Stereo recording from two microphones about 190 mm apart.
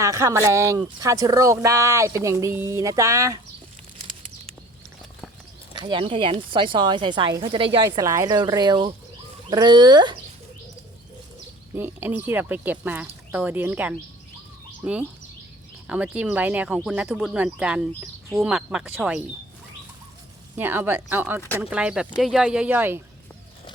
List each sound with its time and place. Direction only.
0.0 s speech: 15° right (ahead or behind)
5.7 s speech: 25° right (ahead or behind)
11.7 s speech: 10° right (ahead or behind)
20.6 s speech: 10° right (ahead or behind)